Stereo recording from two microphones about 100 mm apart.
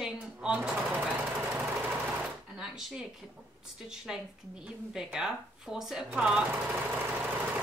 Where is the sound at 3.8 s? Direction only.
5° right (ahead or behind).